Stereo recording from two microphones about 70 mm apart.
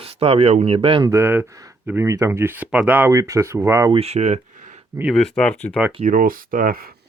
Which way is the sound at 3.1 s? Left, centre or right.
Right.